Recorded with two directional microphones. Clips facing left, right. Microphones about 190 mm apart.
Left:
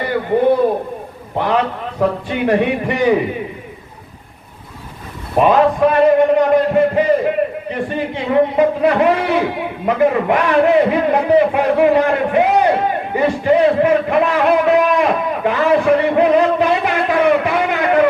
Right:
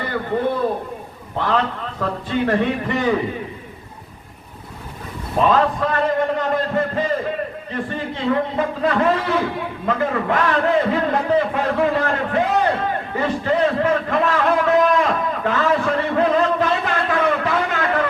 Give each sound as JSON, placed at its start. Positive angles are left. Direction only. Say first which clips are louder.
{"t": 1.4, "sound": "a man's voice", "louder": "left 4 dB", "side_deg": 15}
{"t": 5.4, "sound": "a man's voice", "louder": "left 5 dB", "side_deg": 15}